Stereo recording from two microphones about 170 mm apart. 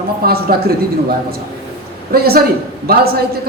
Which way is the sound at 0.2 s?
65° right (ahead or behind).